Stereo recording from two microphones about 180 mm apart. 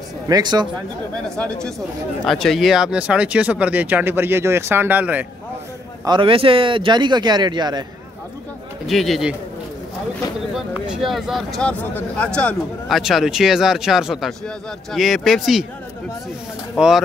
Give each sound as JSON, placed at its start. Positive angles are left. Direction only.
{"t": 0.3, "sound": "speech", "side_deg": -20}
{"t": 1.3, "sound": "speech", "side_deg": 5}
{"t": 6.0, "sound": "speech", "side_deg": -25}
{"t": 8.8, "sound": "speech", "side_deg": 0}
{"t": 10.5, "sound": "speech", "side_deg": 0}
{"t": 16.7, "sound": "speech", "side_deg": -5}